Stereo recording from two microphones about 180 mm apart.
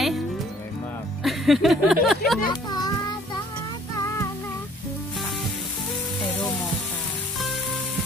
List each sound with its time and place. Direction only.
1.2 s music: centre (ahead or behind)
2.5 s children playing: 25° left (ahead or behind)